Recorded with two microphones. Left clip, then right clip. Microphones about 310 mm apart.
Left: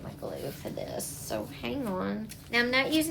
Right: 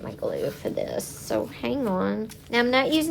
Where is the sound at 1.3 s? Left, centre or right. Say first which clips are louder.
Right 8 dB; centre.